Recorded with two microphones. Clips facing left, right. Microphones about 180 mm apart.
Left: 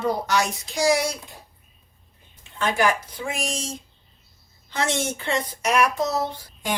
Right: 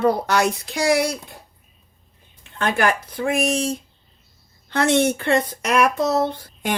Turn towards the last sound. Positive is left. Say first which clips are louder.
# right 3 dB
turn(degrees=-60)  # may be behind; listen again after turning